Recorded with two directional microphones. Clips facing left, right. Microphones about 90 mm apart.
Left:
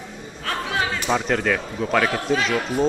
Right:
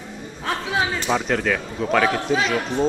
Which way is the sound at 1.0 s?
Centre (ahead or behind).